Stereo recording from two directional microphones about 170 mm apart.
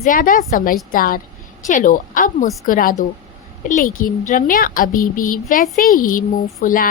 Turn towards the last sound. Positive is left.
turn(degrees=55)  # may be behind; listen again after turning